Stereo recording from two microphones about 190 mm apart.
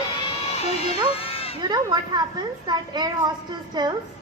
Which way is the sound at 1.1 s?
30° left (ahead or behind).